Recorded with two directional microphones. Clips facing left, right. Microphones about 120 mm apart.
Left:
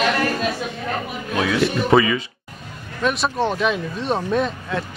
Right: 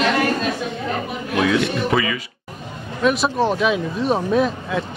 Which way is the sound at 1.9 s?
30° left (ahead or behind).